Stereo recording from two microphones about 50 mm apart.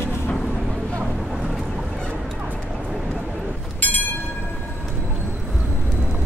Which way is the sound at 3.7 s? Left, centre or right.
Left.